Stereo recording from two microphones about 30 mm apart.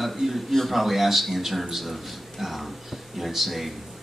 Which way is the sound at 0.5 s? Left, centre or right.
Centre.